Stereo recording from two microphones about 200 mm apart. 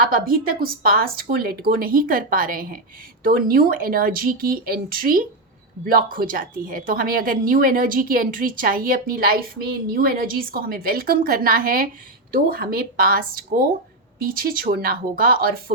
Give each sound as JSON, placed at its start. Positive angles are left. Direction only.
{"t": 0.0, "sound": "a woman's voice", "side_deg": -45}